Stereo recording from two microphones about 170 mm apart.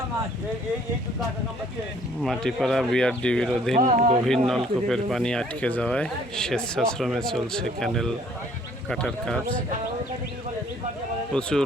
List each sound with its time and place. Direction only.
2.2 s speech: centre (ahead or behind)
3.8 s speech: 50° right (ahead or behind)
4.3 s speech: centre (ahead or behind)
11.3 s speech: 5° left (ahead or behind)